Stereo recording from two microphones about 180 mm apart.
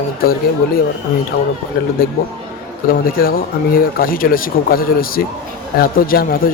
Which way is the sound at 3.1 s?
55° left (ahead or behind).